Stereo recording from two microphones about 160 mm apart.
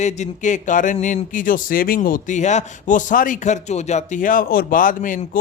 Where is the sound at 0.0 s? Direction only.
50° left (ahead or behind).